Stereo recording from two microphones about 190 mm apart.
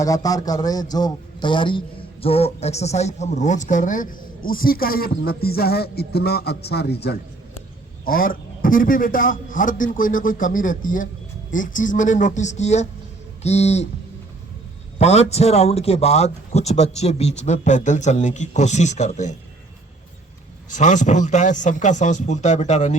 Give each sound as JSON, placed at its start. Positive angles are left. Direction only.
{"t": 0.0, "sound": "a man's voice", "side_deg": 20}
{"t": 14.9, "sound": "a man's voice", "side_deg": 35}
{"t": 20.7, "sound": "a man's voice", "side_deg": 40}